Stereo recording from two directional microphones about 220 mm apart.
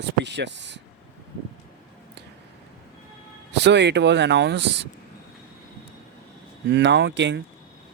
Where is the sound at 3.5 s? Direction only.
50° right (ahead or behind).